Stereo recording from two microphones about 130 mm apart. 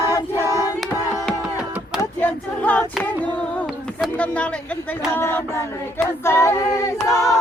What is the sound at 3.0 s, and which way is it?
Music, 10° left (ahead or behind).